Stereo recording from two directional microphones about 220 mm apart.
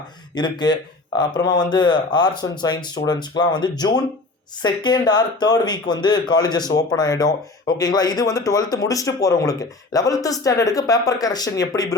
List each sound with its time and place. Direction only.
0.3 s speech: 20° left (ahead or behind)